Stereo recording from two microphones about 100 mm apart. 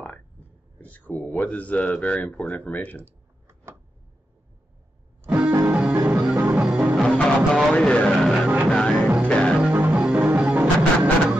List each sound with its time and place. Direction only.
0.7 s a sound: 15° left (ahead or behind)
1.3 s speech: 15° left (ahead or behind)
3.1 s computer keyboard: 25° right (ahead or behind)
5.3 s music: 15° right (ahead or behind)
7.1 s music: 10° left (ahead or behind)
7.7 s speech: 10° left (ahead or behind)
8.6 s music: 5° left (ahead or behind)
9.6 s music: 15° right (ahead or behind)